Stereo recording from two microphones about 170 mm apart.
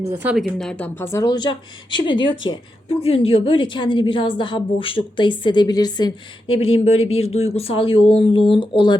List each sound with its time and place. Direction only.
0.1 s a woman's voice: 10° right (ahead or behind); by 6.1 s 25° left (ahead or behind)
6.7 s a woman's voice: 35° left (ahead or behind)